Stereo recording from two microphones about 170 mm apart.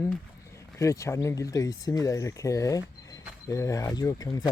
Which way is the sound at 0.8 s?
20° left (ahead or behind).